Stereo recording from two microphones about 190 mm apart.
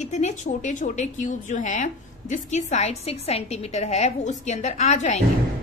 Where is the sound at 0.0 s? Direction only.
40° left (ahead or behind).